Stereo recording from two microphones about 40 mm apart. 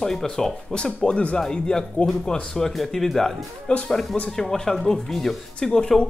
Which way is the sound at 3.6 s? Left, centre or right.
Left.